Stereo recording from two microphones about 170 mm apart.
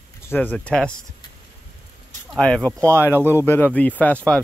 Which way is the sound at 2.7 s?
15° right (ahead or behind).